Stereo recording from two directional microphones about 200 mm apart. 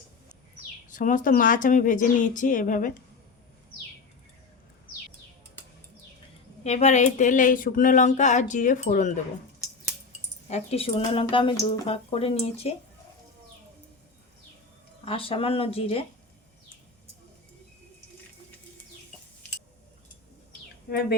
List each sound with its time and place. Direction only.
0.9 s speech: 40° left (ahead or behind)
6.7 s speech: 35° left (ahead or behind)
10.5 s speech: 30° left (ahead or behind)
15.0 s speech: 25° left (ahead or behind)